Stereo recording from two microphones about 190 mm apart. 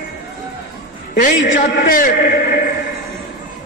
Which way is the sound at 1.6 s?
45° left (ahead or behind).